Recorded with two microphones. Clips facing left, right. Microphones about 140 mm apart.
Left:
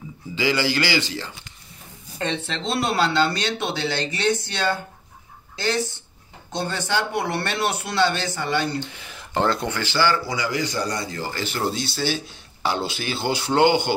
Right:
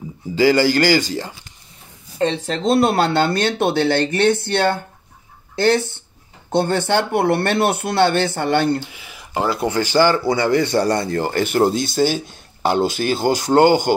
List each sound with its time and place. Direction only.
0.4 s speech: 45° right (ahead or behind)
8.9 s speech: 5° right (ahead or behind)
9.8 s speech: 45° right (ahead or behind)